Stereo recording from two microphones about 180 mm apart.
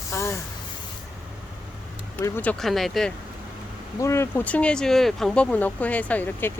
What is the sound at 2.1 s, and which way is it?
Speech, 10° left (ahead or behind).